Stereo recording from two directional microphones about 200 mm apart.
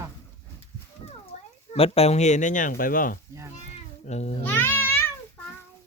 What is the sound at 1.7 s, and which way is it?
Speech, 30° left (ahead or behind).